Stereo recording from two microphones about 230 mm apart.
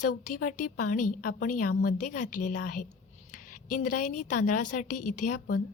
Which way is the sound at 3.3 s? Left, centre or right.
Left.